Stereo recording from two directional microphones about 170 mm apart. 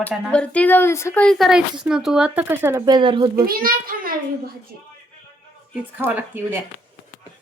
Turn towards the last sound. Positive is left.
turn(degrees=-10)  # may be behind; listen again after turning